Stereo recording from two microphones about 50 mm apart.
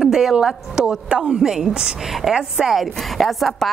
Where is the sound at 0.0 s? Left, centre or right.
Centre.